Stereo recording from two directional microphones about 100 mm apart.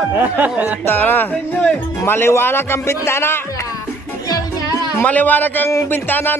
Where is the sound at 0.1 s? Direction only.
20° right (ahead or behind).